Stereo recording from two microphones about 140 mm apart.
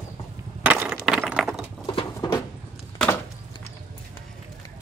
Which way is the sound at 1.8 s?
35° left (ahead or behind).